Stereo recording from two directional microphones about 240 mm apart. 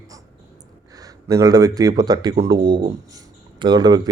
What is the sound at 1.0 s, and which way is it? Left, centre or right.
Speech, centre.